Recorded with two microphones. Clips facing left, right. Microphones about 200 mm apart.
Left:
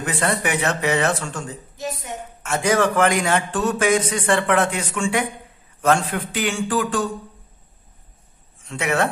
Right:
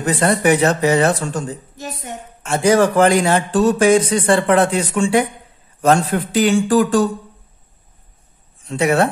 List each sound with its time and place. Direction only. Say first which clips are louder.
0.0 s a man's voice: right 7 dB; 35° right (ahead or behind)
8.6 s a man's voice: right 6 dB; 35° right (ahead or behind)